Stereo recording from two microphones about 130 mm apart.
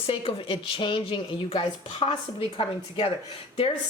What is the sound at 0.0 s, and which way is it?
Speech, 45° left (ahead or behind).